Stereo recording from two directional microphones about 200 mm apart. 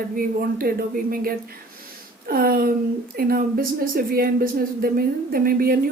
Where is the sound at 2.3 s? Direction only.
50° right (ahead or behind).